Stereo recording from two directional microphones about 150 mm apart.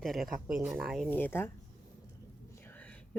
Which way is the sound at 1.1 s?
15° left (ahead or behind).